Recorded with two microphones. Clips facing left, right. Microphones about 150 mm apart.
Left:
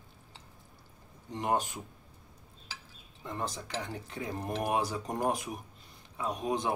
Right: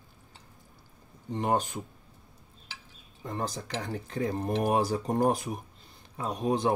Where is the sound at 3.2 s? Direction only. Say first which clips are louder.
Right 3 dB; 35° right (ahead or behind).